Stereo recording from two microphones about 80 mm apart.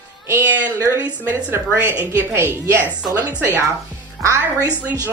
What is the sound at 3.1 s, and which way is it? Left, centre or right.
Speech, right.